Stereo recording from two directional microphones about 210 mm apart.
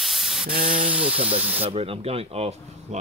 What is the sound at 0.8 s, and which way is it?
Speech, 5° right (ahead or behind).